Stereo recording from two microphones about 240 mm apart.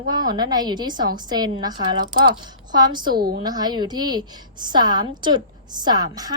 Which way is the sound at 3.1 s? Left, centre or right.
Right.